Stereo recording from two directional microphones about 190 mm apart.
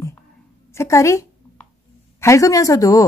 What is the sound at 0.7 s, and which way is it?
A woman's voice, 15° left (ahead or behind).